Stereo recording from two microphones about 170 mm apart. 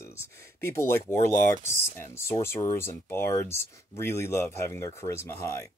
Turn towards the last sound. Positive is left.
turn(degrees=15)  # may be behind; listen again after turning